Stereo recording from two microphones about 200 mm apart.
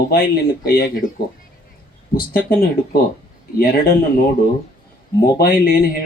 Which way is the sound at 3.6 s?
45° left (ahead or behind).